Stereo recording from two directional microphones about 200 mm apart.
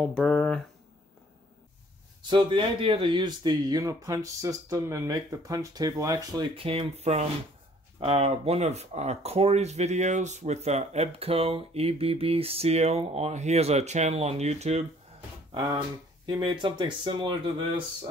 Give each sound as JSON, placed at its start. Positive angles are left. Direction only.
{"t": 0.0, "sound": "speech", "side_deg": 5}
{"t": 2.2, "sound": "speech", "side_deg": -25}
{"t": 15.5, "sound": "speech", "side_deg": -20}